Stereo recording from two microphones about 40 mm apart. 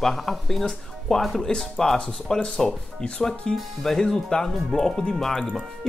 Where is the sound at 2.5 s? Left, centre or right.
Left.